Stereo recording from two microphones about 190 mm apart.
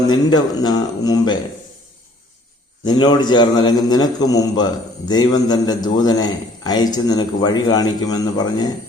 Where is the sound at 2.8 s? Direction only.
20° left (ahead or behind).